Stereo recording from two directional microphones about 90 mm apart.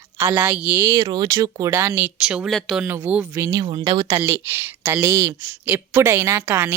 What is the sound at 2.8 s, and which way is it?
Speech, 25° right (ahead or behind).